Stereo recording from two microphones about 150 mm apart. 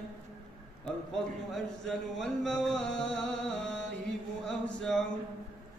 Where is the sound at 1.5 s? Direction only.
Centre (ahead or behind).